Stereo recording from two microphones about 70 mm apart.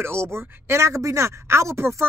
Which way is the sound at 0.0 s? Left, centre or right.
Right.